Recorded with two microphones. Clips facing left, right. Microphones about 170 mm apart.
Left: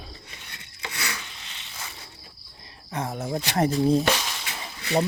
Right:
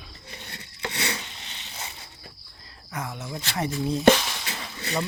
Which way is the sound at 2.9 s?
35° left (ahead or behind).